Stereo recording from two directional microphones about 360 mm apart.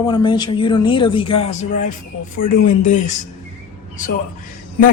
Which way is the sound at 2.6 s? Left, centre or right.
Left.